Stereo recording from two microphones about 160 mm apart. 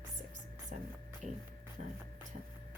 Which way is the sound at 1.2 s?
50° right (ahead or behind).